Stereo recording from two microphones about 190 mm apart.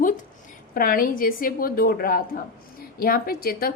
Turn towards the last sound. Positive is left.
turn(degrees=50)  # may be behind; listen again after turning